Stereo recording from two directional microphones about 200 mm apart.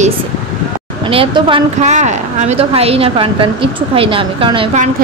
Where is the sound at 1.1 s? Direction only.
25° right (ahead or behind).